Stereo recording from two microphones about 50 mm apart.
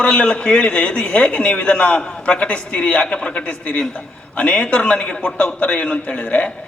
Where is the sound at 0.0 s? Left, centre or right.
Left.